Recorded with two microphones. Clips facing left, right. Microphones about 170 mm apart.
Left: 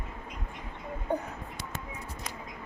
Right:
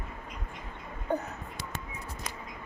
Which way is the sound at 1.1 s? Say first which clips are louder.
Even; 10° left (ahead or behind).